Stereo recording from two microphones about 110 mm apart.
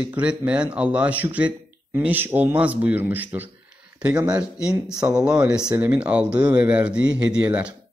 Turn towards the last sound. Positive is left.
turn(degrees=-10)  # may be behind; listen again after turning